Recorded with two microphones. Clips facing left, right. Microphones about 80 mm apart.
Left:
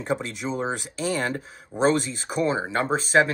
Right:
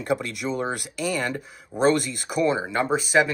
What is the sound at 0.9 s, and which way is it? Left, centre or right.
Speech, left.